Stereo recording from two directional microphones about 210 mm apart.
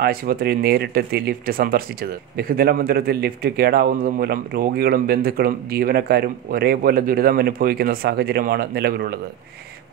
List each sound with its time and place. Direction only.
0.0 s speech: 45° right (ahead or behind)